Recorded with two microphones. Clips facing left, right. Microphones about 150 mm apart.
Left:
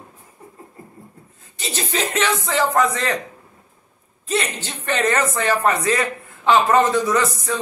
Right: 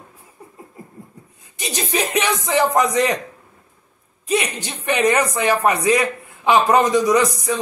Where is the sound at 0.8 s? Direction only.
10° right (ahead or behind).